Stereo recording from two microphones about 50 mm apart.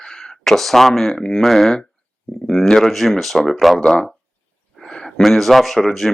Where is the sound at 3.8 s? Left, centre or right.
Centre.